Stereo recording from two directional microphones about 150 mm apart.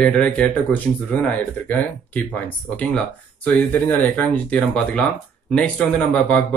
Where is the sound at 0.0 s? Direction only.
5° left (ahead or behind).